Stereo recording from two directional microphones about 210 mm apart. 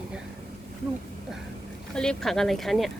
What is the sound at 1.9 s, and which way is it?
Speech, 5° left (ahead or behind).